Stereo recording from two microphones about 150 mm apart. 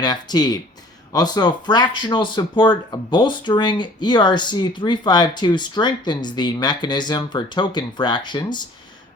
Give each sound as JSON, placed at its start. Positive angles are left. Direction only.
{"t": 0.0, "sound": "speech", "side_deg": 25}